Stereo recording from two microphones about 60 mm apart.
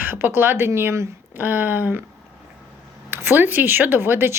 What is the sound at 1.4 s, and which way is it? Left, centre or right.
Speech, right.